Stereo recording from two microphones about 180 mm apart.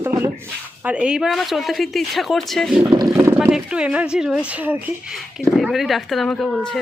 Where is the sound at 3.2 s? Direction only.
10° right (ahead or behind).